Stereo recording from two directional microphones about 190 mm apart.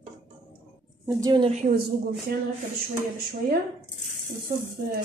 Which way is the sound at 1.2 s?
25° right (ahead or behind).